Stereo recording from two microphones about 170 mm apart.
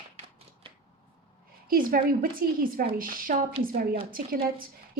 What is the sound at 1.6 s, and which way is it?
A woman's voice, 60° right (ahead or behind).